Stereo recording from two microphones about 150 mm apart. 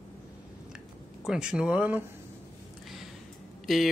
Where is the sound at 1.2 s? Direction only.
5° right (ahead or behind).